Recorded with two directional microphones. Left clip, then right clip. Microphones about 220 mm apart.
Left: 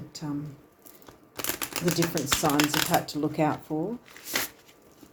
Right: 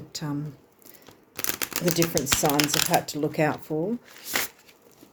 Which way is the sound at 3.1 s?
25° right (ahead or behind).